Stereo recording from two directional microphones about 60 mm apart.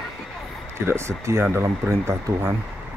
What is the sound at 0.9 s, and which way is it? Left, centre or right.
Speech, right.